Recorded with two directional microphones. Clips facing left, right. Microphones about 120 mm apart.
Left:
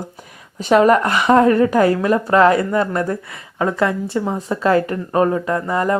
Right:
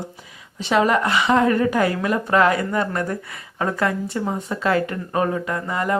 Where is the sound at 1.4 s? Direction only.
35° left (ahead or behind).